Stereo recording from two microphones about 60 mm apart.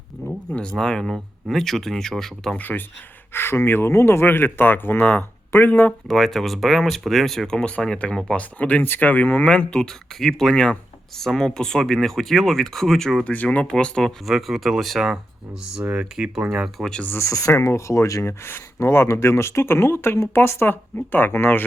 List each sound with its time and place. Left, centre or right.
0.3 s speech: centre
2.6 s speech: left
3.3 s speech: left
6.1 s speech: centre
13.2 s speech: left
13.7 s speech: centre
14.3 s speech: centre
15.8 s speech: right
16.6 s speech: centre
17.2 s speech: left